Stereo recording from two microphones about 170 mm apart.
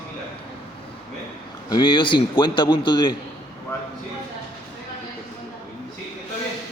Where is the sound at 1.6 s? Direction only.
25° left (ahead or behind).